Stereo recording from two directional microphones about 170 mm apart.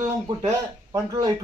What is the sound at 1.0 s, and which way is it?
Speech, 20° right (ahead or behind).